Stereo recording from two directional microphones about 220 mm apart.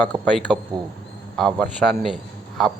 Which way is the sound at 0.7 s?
20° right (ahead or behind).